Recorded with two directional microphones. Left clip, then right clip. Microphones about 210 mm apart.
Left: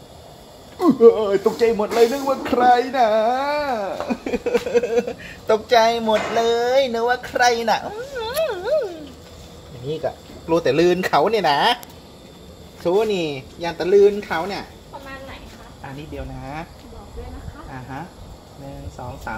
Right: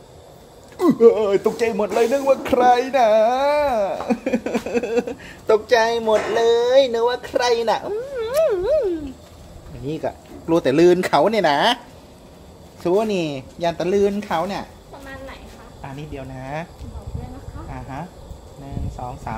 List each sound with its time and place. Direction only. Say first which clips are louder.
0.7 s speech: left 1 dB; 20° right (ahead or behind)
10.0 s speech: right 1 dB; 30° right (ahead or behind)
12.8 s speech: left 1 dB; 35° right (ahead or behind)